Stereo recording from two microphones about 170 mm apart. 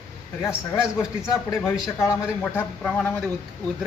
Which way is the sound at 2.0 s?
15° left (ahead or behind).